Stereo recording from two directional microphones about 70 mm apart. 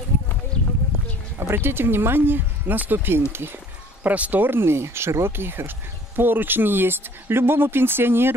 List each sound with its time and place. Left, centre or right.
1.4 s speech: right
4.0 s speech: right